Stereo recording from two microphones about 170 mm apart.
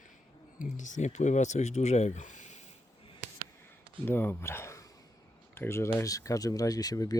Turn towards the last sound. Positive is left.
turn(degrees=20)  # may be behind; listen again after turning